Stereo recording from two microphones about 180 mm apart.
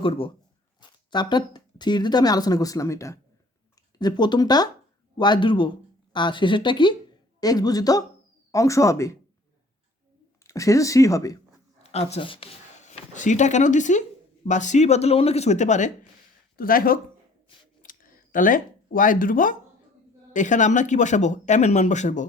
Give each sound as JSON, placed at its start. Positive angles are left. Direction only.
{"t": 0.0, "sound": "speech", "side_deg": 30}
{"t": 10.4, "sound": "speech", "side_deg": 15}
{"t": 11.8, "sound": "speech", "side_deg": 35}
{"t": 12.9, "sound": "speech", "side_deg": 40}
{"t": 16.6, "sound": "speech", "side_deg": 55}
{"t": 17.8, "sound": "a sound", "side_deg": 50}
{"t": 20.3, "sound": "speech", "side_deg": 45}